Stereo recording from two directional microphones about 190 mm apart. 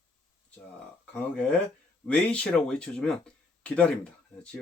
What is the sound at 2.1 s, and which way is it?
Speech, 5° left (ahead or behind).